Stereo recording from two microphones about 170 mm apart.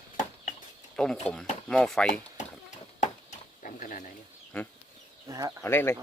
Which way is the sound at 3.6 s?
50° left (ahead or behind).